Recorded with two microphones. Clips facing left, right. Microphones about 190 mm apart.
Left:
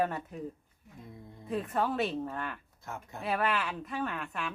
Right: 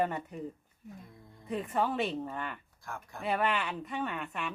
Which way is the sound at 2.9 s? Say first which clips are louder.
Left 1 dB; 20° left (ahead or behind).